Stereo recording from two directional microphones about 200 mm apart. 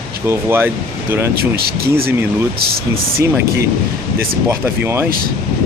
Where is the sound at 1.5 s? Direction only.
50° right (ahead or behind).